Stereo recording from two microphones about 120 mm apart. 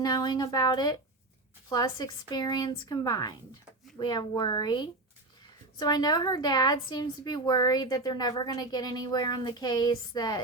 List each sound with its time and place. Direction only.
0.0 s a woman's voice: 35° left (ahead or behind)